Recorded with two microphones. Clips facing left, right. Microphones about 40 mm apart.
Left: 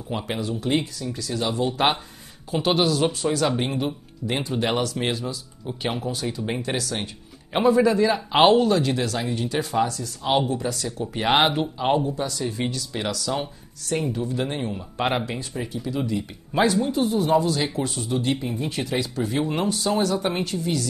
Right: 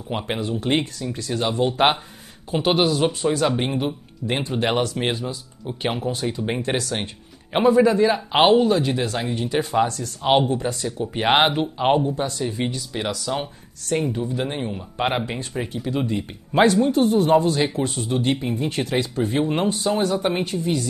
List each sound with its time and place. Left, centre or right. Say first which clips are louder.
0.1 s speech: right 2 dB; right
2.5 s speech: right 2 dB; centre
4.9 s speech: right 2 dB; centre
6.6 s speech: right 3 dB; right
7.5 s speech: right 2 dB; centre
9.8 s speech: right 4 dB; right; by 11.7 s centre
11.8 s speech: right 3 dB; right
12.5 s speech: right 2 dB; centre
15.2 s speech: right 2 dB; right
16.7 s speech: right 4 dB; right
17.6 s speech: right 3 dB; right
18.7 s speech: right 3 dB; right
19.1 s speech: right 3 dB; right